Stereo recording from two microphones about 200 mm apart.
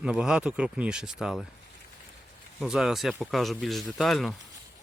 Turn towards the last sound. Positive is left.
turn(degrees=0)  # may be behind; listen again after turning